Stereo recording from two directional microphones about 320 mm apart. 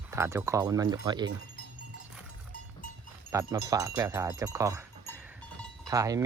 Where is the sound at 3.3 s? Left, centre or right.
Centre.